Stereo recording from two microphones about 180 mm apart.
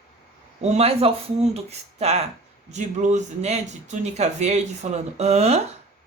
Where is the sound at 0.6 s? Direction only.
35° right (ahead or behind).